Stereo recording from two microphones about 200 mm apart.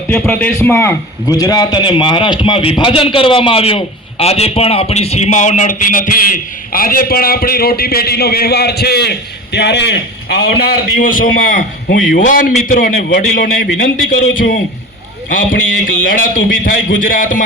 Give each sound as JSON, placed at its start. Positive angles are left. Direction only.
{"t": 0.1, "sound": "a man's voice", "side_deg": 5}
{"t": 15.3, "sound": "a man's voice", "side_deg": 40}